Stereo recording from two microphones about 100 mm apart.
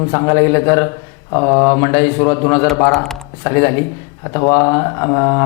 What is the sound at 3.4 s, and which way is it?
Speech, 25° left (ahead or behind).